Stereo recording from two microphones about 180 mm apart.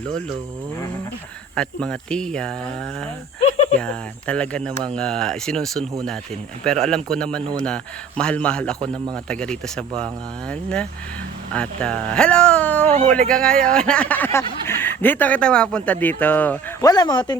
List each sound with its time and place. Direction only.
1.5 s a man's voice: 5° left (ahead or behind)
3.8 s a man's voice: 5° left (ahead or behind)
16.8 s speech: 20° left (ahead or behind)